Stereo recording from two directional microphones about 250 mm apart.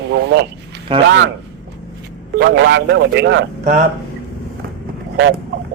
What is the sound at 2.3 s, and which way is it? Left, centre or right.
Speech, right.